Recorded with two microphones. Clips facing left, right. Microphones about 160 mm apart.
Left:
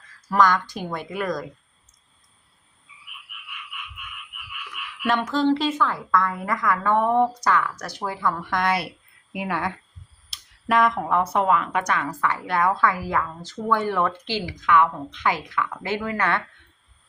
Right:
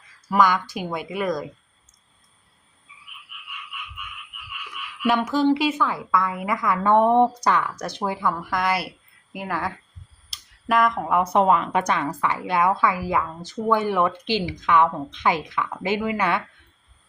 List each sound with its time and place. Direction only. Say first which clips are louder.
0.3 s a woman's voice: even; 10° right (ahead or behind)
5.0 s a woman's voice: right 1 dB; 10° right (ahead or behind)
6.8 s speech: right 4 dB; 25° right (ahead or behind); by 9.7 s centre (ahead or behind)
10.2 s a sound: even; centre (ahead or behind)
11.2 s a woman's voice: right 5 dB; 15° right (ahead or behind)
11.4 s a woman's voice: right 2 dB; 25° right (ahead or behind)